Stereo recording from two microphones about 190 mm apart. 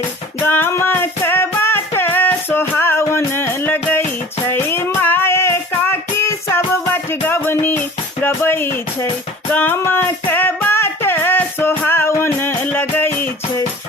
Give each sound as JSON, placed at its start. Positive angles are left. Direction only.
{"t": 0.3, "sound": "music", "side_deg": 10}